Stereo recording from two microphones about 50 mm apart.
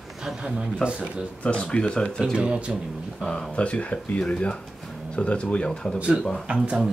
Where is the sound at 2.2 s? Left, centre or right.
Centre.